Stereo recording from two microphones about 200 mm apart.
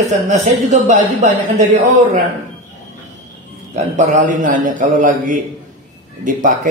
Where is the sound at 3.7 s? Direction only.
40° right (ahead or behind).